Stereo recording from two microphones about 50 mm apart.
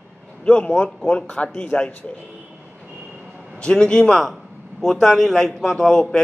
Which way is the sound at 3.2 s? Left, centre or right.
Centre.